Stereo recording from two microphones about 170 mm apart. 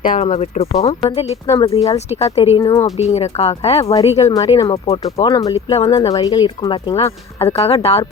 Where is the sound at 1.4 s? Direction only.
20° left (ahead or behind).